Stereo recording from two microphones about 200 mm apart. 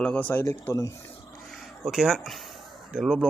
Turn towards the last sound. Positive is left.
turn(degrees=0)  # may be behind; listen again after turning